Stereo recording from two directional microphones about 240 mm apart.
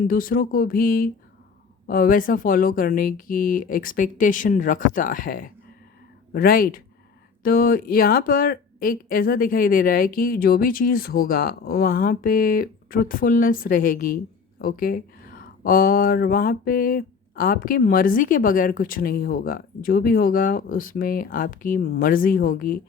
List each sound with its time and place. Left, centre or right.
0.1 s speech: left